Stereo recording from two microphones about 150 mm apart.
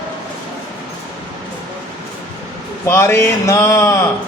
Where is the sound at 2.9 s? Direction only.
15° left (ahead or behind).